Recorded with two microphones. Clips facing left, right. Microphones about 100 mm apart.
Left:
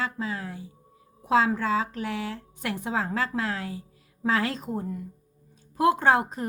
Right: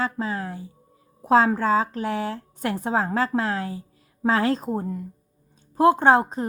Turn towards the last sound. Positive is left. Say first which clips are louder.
# right 4 dB
turn(degrees=-30)  # may be behind; listen again after turning